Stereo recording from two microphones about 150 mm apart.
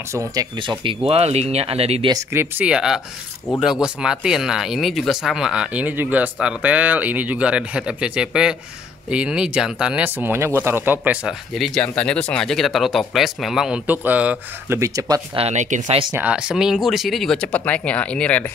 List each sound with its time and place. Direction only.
0.1 s speech: 20° right (ahead or behind); by 2.0 s 40° right (ahead or behind)
2.3 s speech: 10° right (ahead or behind)
11.5 s speech: 5° left (ahead or behind)
14.8 s speech: 25° right (ahead or behind)
15.3 s speech: 50° right (ahead or behind)
16.2 s speech: 5° right (ahead or behind); by 18.5 s 10° left (ahead or behind)